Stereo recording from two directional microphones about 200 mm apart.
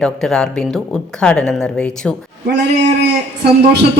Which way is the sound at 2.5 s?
60° right (ahead or behind).